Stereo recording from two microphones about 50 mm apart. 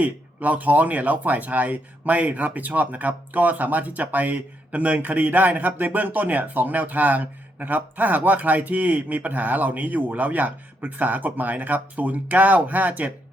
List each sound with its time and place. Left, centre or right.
0.0 s speech: right